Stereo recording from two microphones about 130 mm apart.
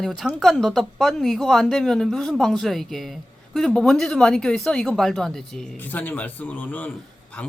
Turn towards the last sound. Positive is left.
turn(degrees=15)  # may be behind; listen again after turning